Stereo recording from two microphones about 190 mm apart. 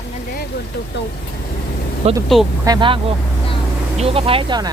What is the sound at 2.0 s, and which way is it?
Speech, 35° right (ahead or behind).